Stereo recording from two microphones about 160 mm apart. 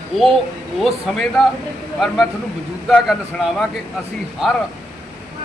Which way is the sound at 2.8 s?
Centre (ahead or behind).